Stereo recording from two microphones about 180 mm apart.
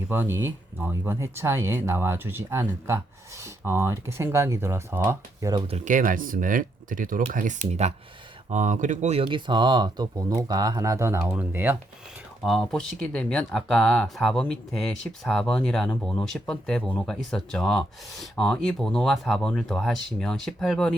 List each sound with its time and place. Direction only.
0.1 s speech: 10° right (ahead or behind)
5.6 s speech: 40° right (ahead or behind); by 11.8 s 10° right (ahead or behind)
12.4 s speech: centre (ahead or behind)